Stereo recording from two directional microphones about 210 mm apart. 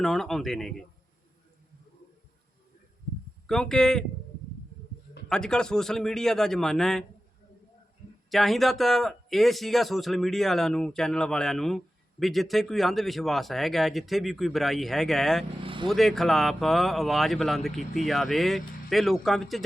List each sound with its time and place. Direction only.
0.0 s speech: centre (ahead or behind)
3.4 s speech: centre (ahead or behind)
5.3 s speech: 5° left (ahead or behind)
8.3 s speech: centre (ahead or behind)
15.6 s vehicle: 25° right (ahead or behind)
15.9 s speech: centre (ahead or behind)